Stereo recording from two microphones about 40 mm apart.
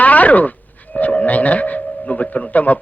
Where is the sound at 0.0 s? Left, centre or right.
Left.